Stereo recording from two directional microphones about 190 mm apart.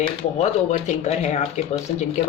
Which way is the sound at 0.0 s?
35° left (ahead or behind).